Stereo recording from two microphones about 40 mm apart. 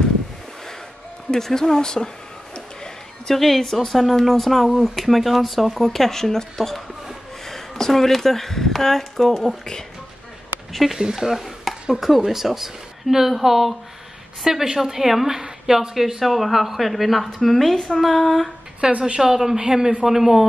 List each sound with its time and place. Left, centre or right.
1.3 s speech: centre
2.5 s a sound: centre
3.3 s speech: centre
4.6 s speech: centre
4.9 s speech: centre
10.7 s speech: centre
18.8 s a woman's voice: right
19.2 s speech: centre